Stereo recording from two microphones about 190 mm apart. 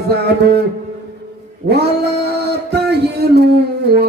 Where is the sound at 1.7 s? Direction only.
55° right (ahead or behind).